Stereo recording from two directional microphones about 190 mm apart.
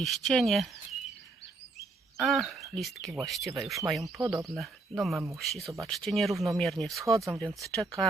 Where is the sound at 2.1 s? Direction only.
Centre (ahead or behind).